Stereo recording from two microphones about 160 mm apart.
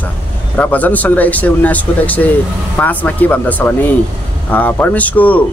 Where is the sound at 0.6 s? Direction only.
10° left (ahead or behind).